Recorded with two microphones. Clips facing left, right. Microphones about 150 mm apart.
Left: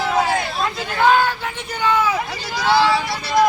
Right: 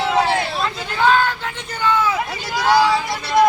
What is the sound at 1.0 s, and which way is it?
Vehicle, 10° left (ahead or behind).